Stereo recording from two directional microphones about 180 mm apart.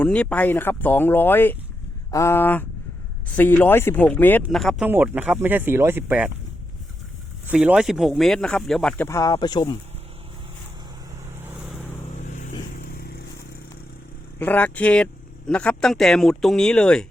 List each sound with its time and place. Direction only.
0.0 s speech: 5° left (ahead or behind)
4.9 s speech: 10° right (ahead or behind)
7.5 s speech: 5° right (ahead or behind)
9.0 s speech: 20° left (ahead or behind)
11.7 s vehicle: 10° left (ahead or behind)
12.1 s vehicle: 45° left (ahead or behind)
12.8 s vehicle: 60° left (ahead or behind)
14.3 s speech: 10° left (ahead or behind)